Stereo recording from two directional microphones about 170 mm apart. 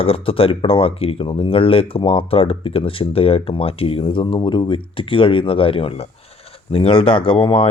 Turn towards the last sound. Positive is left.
turn(degrees=30)  # may be behind; listen again after turning